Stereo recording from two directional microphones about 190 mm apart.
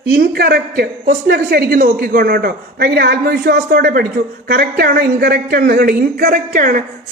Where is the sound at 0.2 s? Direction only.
55° right (ahead or behind).